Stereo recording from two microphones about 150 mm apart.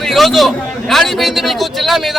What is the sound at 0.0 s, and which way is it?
A man's voice, centre (ahead or behind).